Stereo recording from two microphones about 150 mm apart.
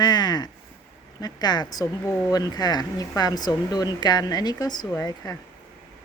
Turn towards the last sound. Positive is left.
turn(degrees=25)  # may be behind; listen again after turning